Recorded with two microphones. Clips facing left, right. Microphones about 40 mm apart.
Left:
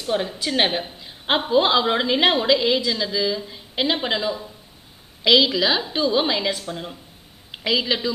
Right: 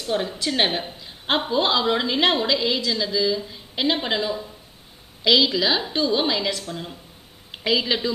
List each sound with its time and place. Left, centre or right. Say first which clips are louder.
0.0 s a woman's voice: left 1 dB; centre
0.7 s a sound: left 1 dB; centre
1.5 s a woman's voice: left 4 dB; centre
5.5 s a woman's voice: left 1 dB; centre